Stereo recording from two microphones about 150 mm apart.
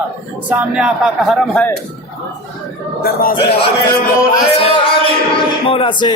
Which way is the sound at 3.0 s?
75° left (ahead or behind).